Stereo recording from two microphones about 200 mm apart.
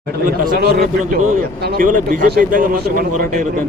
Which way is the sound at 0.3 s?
45° right (ahead or behind).